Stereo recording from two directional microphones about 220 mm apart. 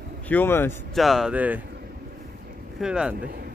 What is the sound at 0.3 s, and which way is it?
Speech, 10° left (ahead or behind).